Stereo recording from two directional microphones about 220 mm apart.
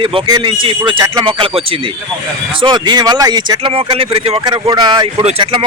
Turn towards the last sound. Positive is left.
turn(degrees=-25)  # may be behind; listen again after turning